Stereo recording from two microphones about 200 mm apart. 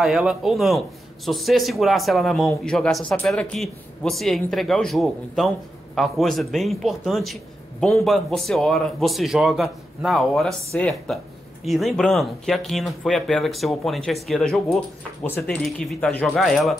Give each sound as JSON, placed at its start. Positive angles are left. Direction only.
{"t": 0.0, "sound": "speech", "side_deg": -5}